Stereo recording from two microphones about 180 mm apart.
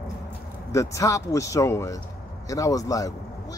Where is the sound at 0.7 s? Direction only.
15° left (ahead or behind).